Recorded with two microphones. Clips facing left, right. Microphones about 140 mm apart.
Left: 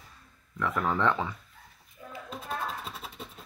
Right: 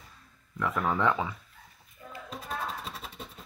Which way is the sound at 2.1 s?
Centre (ahead or behind).